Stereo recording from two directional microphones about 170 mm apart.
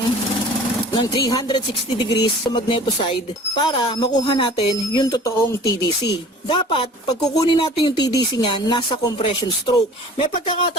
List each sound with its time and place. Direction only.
0.9 s speech: 25° left (ahead or behind)